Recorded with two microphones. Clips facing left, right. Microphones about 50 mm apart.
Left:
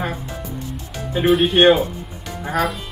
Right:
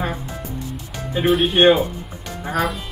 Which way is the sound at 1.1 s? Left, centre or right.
Centre.